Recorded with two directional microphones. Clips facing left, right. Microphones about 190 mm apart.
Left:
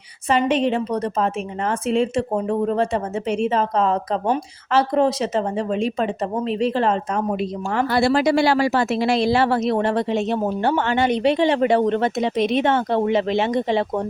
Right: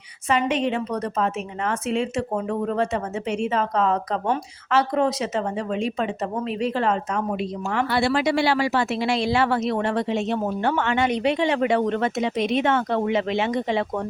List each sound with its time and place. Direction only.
0.3 s speech: 30° left (ahead or behind)